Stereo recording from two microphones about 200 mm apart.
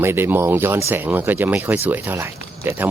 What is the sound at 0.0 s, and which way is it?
Speech, 10° right (ahead or behind).